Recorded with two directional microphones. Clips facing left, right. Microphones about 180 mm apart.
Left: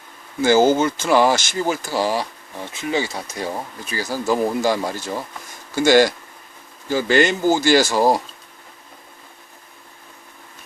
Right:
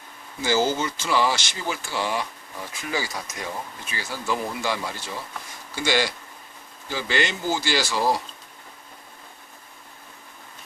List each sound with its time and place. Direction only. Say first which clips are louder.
0.4 s speech: left 8 dB; 50° left (ahead or behind); by 2.6 s 35° left (ahead or behind)
2.7 s speech: left 6 dB; 25° left (ahead or behind); by 8.2 s 45° left (ahead or behind)